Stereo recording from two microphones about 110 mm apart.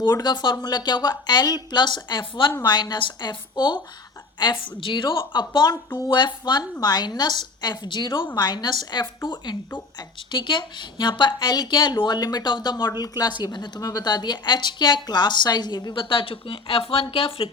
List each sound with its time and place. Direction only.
0.0 s a woman's voice: 40° left (ahead or behind)
2.5 s a woman's voice: 35° left (ahead or behind); by 17.5 s 55° left (ahead or behind)